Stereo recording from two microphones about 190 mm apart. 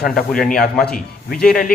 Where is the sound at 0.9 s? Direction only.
50° left (ahead or behind).